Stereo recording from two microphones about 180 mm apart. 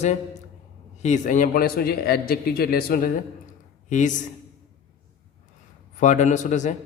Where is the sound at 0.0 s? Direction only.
40° left (ahead or behind).